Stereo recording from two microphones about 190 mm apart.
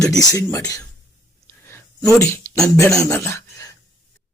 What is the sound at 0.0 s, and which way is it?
Speech, 20° left (ahead or behind).